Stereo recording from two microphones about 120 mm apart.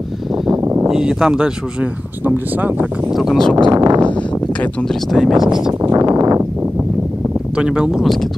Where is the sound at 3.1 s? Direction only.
Centre (ahead or behind).